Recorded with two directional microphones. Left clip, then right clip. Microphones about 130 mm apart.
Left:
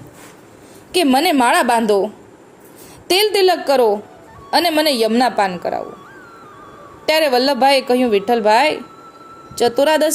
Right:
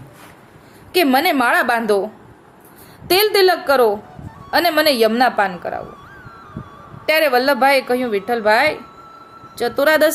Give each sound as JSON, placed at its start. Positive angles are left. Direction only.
{"t": 0.9, "sound": "a woman's voice", "side_deg": 15}
{"t": 3.1, "sound": "a woman's voice", "side_deg": 20}
{"t": 7.0, "sound": "a woman's voice", "side_deg": 20}